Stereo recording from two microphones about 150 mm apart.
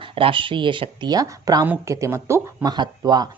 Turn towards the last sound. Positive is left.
turn(degrees=-30)  # may be behind; listen again after turning